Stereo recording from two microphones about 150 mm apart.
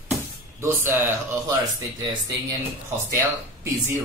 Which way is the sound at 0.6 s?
15° right (ahead or behind).